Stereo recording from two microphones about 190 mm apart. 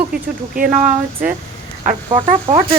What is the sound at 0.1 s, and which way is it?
Speech, 50° right (ahead or behind).